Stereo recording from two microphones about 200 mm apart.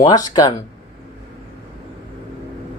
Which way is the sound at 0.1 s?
20° left (ahead or behind).